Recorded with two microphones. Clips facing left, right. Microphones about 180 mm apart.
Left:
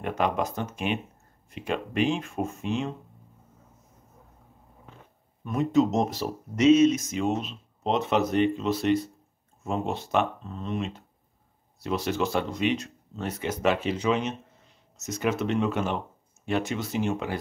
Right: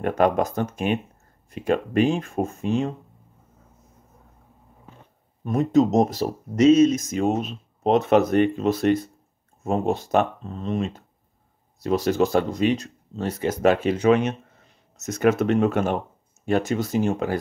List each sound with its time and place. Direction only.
0.0 s speech: 45° right (ahead or behind)
5.4 s speech: 40° right (ahead or behind)